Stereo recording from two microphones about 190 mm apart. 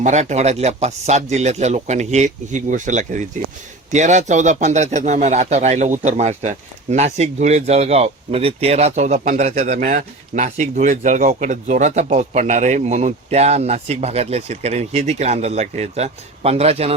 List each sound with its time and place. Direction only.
0.0 s speech: 40° right (ahead or behind)